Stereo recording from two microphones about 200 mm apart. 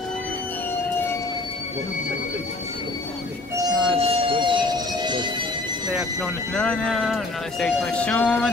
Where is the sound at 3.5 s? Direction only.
25° right (ahead or behind).